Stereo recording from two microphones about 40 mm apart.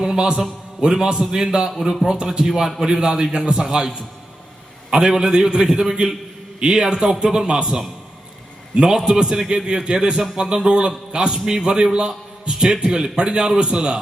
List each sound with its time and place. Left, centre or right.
0.0 s mantra: centre
0.8 s a man's voice: centre
4.9 s a man's voice: centre